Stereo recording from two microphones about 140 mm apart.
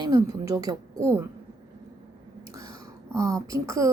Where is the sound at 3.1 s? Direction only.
25° right (ahead or behind).